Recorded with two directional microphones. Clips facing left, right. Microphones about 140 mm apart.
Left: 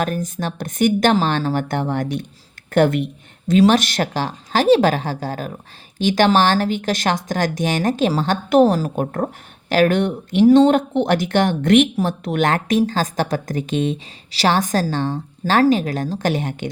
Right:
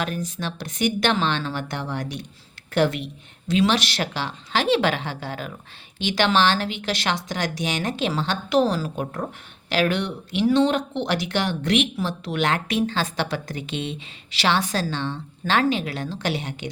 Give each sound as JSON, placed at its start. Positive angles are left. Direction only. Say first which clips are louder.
{"t": 0.0, "sound": "a woman's voice", "louder": "left 5 dB", "side_deg": 45}